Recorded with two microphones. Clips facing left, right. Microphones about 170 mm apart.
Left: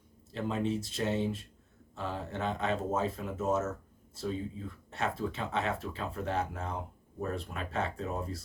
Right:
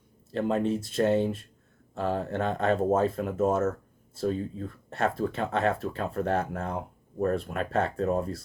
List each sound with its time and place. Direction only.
0.3 s speech: 55° right (ahead or behind)